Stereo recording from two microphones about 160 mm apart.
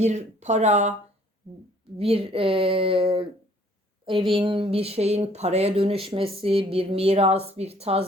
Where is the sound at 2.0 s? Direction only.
35° right (ahead or behind).